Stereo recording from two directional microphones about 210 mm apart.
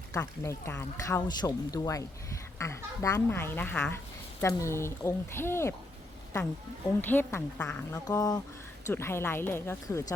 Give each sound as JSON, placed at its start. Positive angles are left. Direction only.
{"t": 0.1, "sound": "speech", "side_deg": 15}